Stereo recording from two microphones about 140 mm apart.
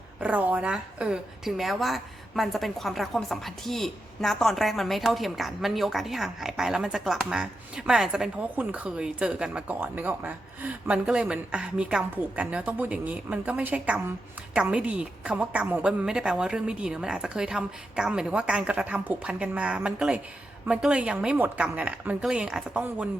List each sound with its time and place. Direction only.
0.2 s a woman's voice: 10° right (ahead or behind)